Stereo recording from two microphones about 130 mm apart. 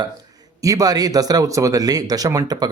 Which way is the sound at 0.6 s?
25° right (ahead or behind).